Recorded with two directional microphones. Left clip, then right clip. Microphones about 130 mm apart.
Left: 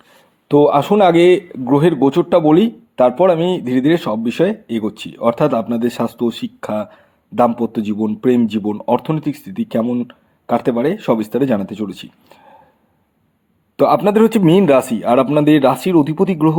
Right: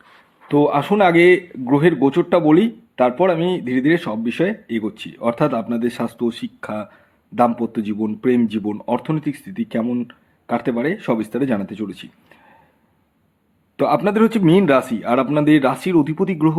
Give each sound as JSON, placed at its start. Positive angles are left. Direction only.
{"t": 0.4, "sound": "a man's voice", "side_deg": 45}
{"t": 13.7, "sound": "a man's voice", "side_deg": 45}